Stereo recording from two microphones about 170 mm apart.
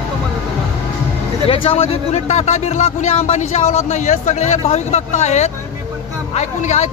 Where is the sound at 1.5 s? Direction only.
30° left (ahead or behind).